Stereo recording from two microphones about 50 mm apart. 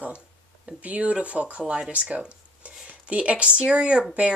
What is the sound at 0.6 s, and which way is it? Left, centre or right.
Speech, right.